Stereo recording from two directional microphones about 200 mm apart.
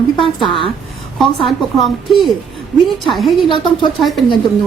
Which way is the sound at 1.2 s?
Centre (ahead or behind).